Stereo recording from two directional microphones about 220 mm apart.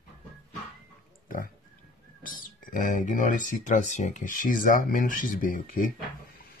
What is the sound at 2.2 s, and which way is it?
Speech, 40° left (ahead or behind).